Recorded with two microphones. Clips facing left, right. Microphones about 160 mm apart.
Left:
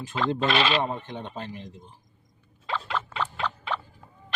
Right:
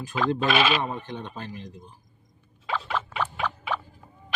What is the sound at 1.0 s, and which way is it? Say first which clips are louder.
Speech: even; 20° left (ahead or behind).